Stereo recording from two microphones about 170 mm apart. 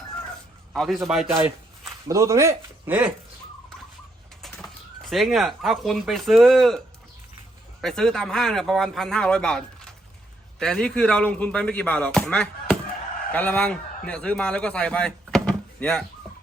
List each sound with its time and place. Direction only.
0.7 s a man's voice: centre (ahead or behind)
2.0 s speech: 20° right (ahead or behind)
4.4 s a man's voice: centre (ahead or behind)